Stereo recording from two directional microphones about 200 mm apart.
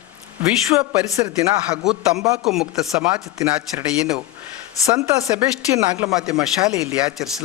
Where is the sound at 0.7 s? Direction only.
5° right (ahead or behind).